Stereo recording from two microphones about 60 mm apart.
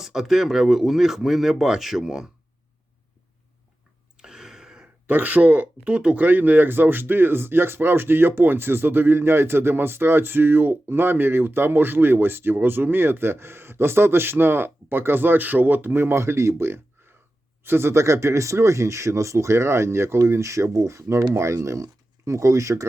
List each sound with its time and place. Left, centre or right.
0.0 s speech: centre
4.2 s a sound: centre
5.0 s speech: right